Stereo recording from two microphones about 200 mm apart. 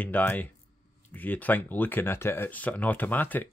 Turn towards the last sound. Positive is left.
turn(degrees=10)  # may be behind; listen again after turning